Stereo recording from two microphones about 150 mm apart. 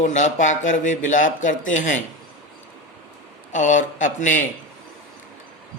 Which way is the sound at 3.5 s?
55° left (ahead or behind).